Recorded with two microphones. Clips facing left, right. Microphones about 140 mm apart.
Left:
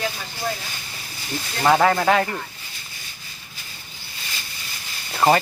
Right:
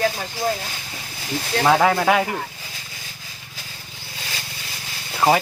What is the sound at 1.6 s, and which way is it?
Speech, centre (ahead or behind).